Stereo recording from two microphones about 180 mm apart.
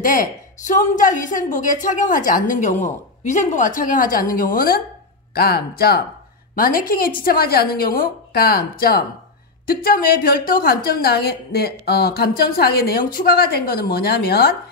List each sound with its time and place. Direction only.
0.0 s a woman's voice: 50° left (ahead or behind)